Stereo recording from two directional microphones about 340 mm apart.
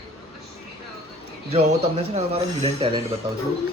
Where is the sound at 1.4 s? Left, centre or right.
Centre.